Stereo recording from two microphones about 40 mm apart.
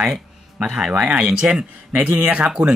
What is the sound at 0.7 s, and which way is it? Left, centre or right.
Speech, centre.